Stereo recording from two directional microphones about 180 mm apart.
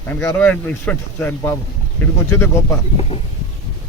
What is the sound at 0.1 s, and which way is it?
Speech, 10° left (ahead or behind).